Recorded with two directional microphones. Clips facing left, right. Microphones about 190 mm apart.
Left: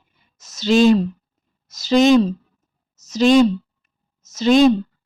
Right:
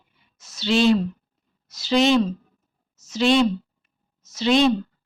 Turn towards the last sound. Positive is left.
turn(degrees=45)  # may be behind; listen again after turning